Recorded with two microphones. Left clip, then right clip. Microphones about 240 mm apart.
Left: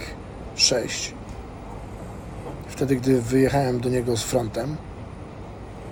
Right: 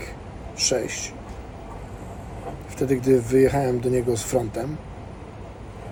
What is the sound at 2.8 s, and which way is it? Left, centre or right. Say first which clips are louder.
Speech: right 1 dB; left.